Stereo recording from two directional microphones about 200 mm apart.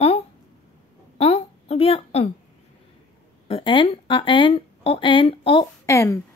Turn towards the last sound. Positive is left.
turn(degrees=15)  # may be behind; listen again after turning